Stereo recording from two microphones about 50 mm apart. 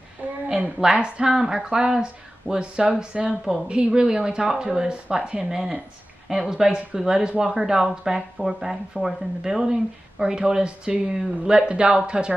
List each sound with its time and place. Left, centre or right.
0.5 s speech: centre